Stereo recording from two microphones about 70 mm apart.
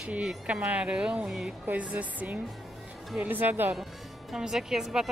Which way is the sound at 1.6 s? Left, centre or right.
Centre.